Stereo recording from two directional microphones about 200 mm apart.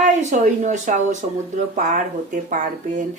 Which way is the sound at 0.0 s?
35° right (ahead or behind).